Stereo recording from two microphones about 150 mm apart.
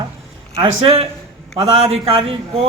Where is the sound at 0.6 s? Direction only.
40° right (ahead or behind).